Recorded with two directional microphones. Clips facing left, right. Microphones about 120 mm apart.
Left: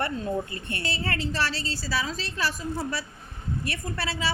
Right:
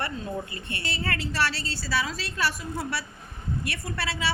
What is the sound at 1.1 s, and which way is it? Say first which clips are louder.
A woman's voice: right 2 dB; 30° left (ahead or behind).